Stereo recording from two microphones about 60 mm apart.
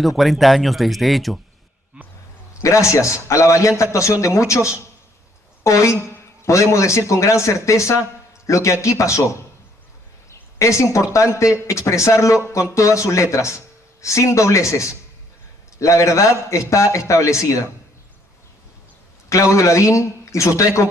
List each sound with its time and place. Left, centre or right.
0.2 s speech: centre
2.0 s a sound: centre
2.6 s a man's voice: left
10.3 s a sound: left
11.1 s a man's voice: left
19.5 s a man's voice: left